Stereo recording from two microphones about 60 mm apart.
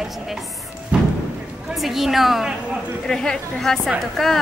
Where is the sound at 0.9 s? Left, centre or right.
Centre.